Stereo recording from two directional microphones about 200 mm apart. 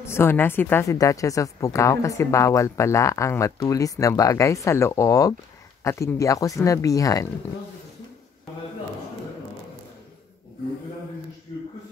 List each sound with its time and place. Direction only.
0.0 s a woman's voice: 10° left (ahead or behind)